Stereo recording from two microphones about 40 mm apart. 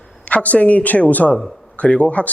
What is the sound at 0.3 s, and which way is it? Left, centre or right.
A man's voice, left.